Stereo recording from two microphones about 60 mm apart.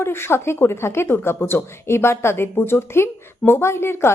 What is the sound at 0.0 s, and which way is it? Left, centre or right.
Speech, left.